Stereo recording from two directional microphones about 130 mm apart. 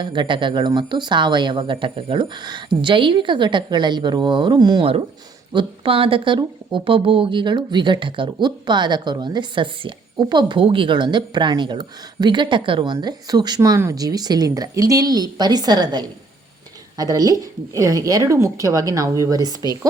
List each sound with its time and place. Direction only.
0.0 s a woman's voice: 35° right (ahead or behind)